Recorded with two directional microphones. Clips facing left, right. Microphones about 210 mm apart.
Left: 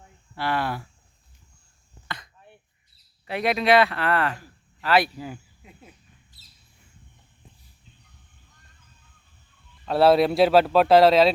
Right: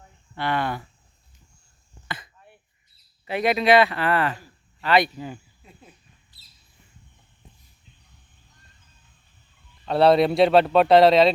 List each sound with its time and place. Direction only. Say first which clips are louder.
0.3 s speech: right 1 dB; 5° left (ahead or behind)
2.0 s throat clearing: right 1 dB; 5° right (ahead or behind)
3.2 s speech: right 2 dB; centre (ahead or behind)
5.6 s a sound: left 1 dB; 15° left (ahead or behind)
6.3 s bird: left 3 dB; 45° left (ahead or behind)
9.8 s speech: right 1 dB; centre (ahead or behind)